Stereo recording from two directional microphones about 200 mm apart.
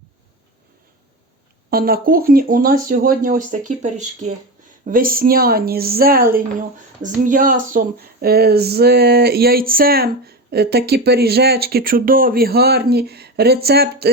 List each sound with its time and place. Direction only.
1.7 s speech: 45° right (ahead or behind)